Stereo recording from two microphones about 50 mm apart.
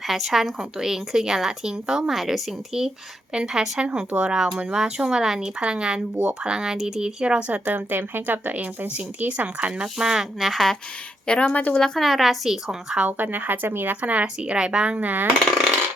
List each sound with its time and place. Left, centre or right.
0.1 s a woman's voice: centre
5.5 s speech: right
9.6 s a woman's voice: centre
11.3 s a woman's voice: left
11.8 s a woman's voice: centre
13.1 s speech: right
14.0 s speech: right
15.0 s speech: right